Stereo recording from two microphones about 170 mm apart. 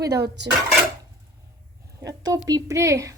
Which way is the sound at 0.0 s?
20° right (ahead or behind).